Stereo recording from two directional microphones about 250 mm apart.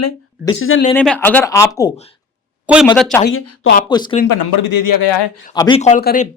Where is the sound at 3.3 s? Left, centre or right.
Left.